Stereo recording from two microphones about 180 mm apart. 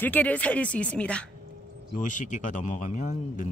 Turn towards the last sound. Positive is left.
turn(degrees=45)  # may be behind; listen again after turning